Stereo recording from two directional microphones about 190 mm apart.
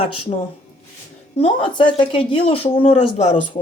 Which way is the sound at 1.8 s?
25° left (ahead or behind).